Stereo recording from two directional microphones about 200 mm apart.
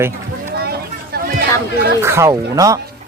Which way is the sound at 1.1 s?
55° right (ahead or behind).